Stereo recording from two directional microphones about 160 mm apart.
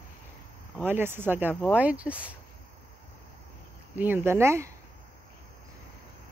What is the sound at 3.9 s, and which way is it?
Speech, 10° right (ahead or behind).